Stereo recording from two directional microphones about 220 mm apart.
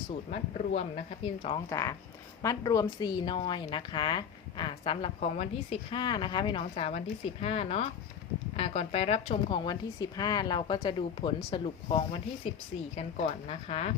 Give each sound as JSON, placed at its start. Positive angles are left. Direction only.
{"t": 0.3, "sound": "a woman's voice", "side_deg": 30}